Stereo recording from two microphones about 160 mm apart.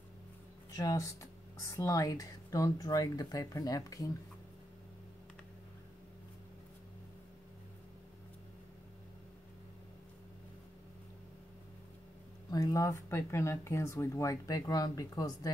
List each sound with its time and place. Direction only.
0.7 s speech: 20° left (ahead or behind)
12.4 s speech: 20° left (ahead or behind)